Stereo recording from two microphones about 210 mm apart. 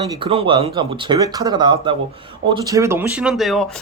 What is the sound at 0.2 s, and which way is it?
Speech, 25° right (ahead or behind).